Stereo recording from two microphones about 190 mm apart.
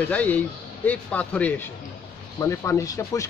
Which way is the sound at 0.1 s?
10° left (ahead or behind).